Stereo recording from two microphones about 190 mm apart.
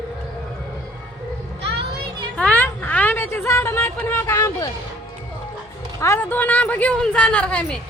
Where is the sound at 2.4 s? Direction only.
10° left (ahead or behind).